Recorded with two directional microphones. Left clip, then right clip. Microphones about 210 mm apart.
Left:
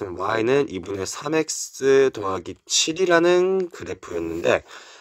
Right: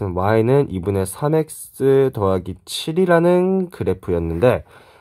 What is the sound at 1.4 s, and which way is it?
Speech, 45° left (ahead or behind).